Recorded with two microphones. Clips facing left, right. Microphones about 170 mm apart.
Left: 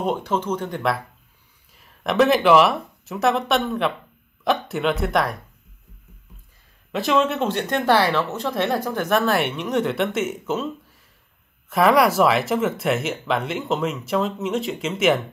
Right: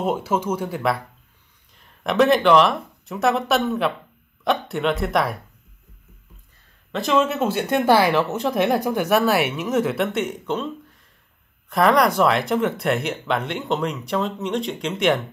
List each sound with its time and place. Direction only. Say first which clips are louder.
0.0 s speech: right 1 dB; 5° right (ahead or behind)
6.9 s speech: even; centre (ahead or behind)